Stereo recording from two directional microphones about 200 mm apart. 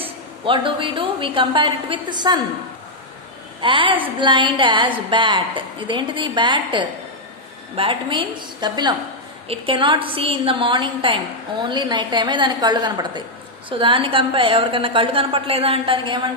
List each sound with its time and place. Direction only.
0.0 s a woman's voice: 25° right (ahead or behind)
3.6 s a woman's voice: 25° right (ahead or behind)